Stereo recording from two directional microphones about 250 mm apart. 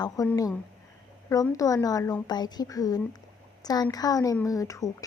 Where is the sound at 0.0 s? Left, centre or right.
Centre.